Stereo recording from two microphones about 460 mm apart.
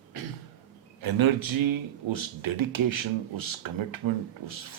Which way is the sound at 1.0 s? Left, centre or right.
Right.